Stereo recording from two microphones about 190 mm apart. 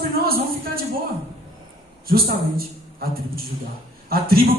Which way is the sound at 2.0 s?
50° right (ahead or behind).